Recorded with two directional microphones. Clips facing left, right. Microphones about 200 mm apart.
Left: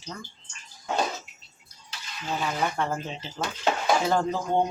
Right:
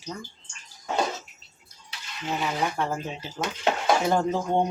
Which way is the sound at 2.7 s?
10° right (ahead or behind).